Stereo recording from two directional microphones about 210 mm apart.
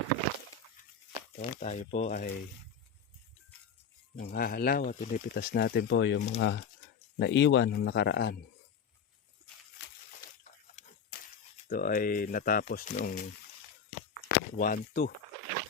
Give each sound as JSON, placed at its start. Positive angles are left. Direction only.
{"t": 1.4, "sound": "speech", "side_deg": 30}
{"t": 4.2, "sound": "speech", "side_deg": 45}
{"t": 5.3, "sound": "speech", "side_deg": 50}
{"t": 10.4, "sound": "a sound", "side_deg": 35}
{"t": 11.7, "sound": "speech", "side_deg": 45}
{"t": 14.3, "sound": "speech", "side_deg": 40}